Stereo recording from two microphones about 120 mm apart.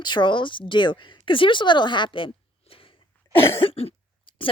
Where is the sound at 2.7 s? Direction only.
55° left (ahead or behind).